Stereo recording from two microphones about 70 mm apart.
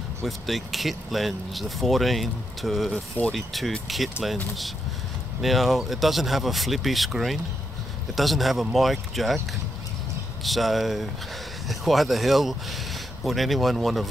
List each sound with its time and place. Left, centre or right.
0.2 s speech: centre
5.4 s speech: centre
10.4 s speech: centre